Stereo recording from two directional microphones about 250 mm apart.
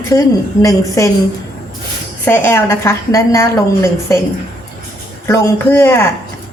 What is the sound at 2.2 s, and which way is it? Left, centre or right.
A woman's voice, centre.